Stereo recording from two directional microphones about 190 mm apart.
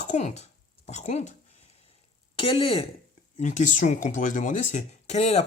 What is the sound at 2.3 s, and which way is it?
Speech, 25° left (ahead or behind).